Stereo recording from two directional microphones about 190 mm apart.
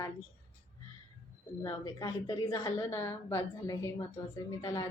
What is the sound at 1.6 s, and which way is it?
A woman's voice, 20° left (ahead or behind).